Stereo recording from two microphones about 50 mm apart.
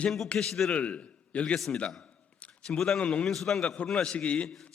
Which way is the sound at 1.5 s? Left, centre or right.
Centre.